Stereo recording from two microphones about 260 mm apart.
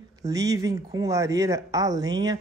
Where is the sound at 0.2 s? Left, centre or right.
Centre.